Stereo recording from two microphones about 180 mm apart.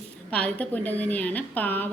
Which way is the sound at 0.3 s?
10° left (ahead or behind).